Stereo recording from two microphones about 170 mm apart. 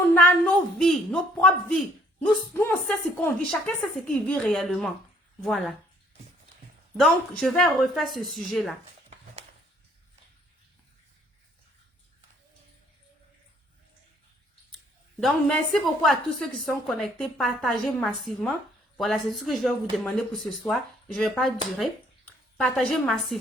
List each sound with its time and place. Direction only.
0.0 s a woman's voice: 10° left (ahead or behind)
6.9 s a woman's voice: centre (ahead or behind)
15.2 s a woman's voice: 5° left (ahead or behind)